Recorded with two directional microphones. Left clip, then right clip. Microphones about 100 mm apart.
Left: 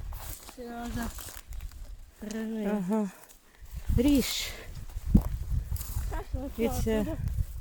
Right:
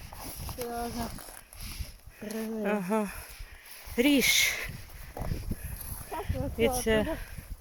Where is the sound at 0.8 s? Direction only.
35° left (ahead or behind).